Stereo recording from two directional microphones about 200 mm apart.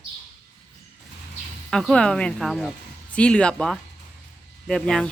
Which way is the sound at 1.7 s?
Centre (ahead or behind).